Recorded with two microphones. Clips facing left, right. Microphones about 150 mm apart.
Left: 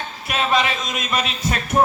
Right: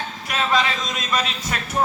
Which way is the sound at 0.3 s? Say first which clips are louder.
Left 1 dB; 15° left (ahead or behind).